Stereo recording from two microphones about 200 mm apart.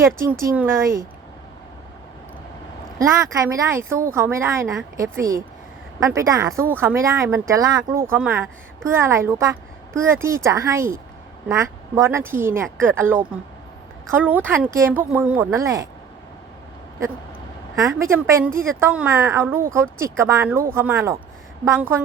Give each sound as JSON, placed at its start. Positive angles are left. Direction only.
{"t": 0.0, "sound": "speech", "side_deg": -15}
{"t": 3.3, "sound": "speech", "side_deg": -15}
{"t": 18.0, "sound": "speech", "side_deg": -15}